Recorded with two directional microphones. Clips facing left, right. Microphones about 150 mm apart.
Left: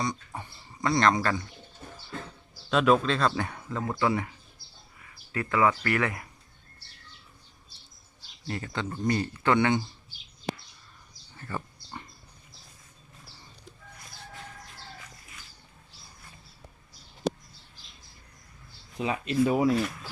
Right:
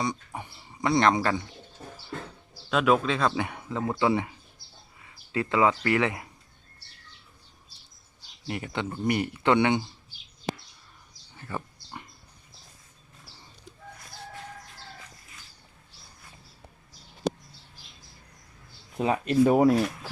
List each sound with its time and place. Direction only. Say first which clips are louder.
0.0 s speech: right 1 dB; 10° right (ahead or behind)
2.6 s speech: even; 5° right (ahead or behind); by 6.2 s 20° right (ahead or behind)
8.4 s speech: right 2 dB; 15° right (ahead or behind)
11.3 s a sound: right 1 dB; 10° right (ahead or behind)
18.9 s speech: right 4 dB; 50° right (ahead or behind)